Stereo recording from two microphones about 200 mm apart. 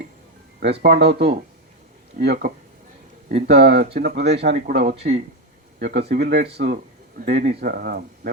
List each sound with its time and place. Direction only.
0.6 s speech: 55° right (ahead or behind)
4.9 s speech: 35° right (ahead or behind)
5.8 s speech: 55° right (ahead or behind)